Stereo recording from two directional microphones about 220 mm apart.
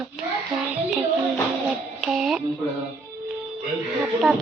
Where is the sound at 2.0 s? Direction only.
Centre (ahead or behind).